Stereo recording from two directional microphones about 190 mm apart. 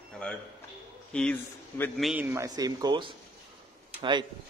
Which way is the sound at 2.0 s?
10° right (ahead or behind).